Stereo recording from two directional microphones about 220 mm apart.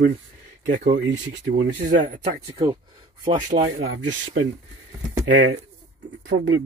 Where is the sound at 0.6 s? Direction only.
35° right (ahead or behind).